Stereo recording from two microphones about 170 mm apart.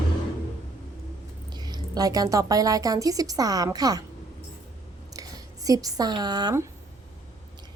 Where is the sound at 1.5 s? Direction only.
25° right (ahead or behind).